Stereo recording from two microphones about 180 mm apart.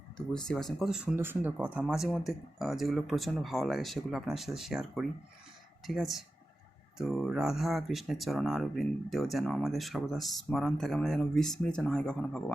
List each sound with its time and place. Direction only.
0.4 s speech: 5° left (ahead or behind)